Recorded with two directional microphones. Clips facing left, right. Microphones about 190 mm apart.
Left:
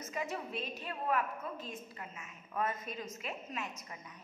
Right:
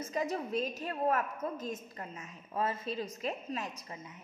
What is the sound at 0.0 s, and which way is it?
A woman's voice, 35° right (ahead or behind).